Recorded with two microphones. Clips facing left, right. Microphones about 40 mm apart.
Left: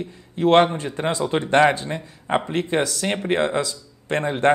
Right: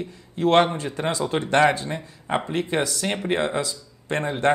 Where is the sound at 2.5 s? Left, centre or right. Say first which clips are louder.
Left 2 dB; left.